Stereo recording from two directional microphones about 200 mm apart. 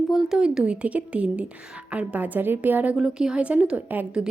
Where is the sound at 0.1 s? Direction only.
5° right (ahead or behind).